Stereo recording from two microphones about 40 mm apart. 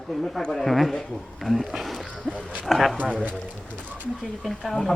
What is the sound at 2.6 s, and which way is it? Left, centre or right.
Speech, centre.